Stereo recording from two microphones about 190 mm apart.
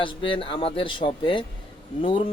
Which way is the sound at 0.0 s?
25° left (ahead or behind).